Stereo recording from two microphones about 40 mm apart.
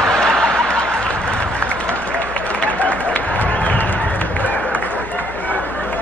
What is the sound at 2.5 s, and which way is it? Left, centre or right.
Applause, left.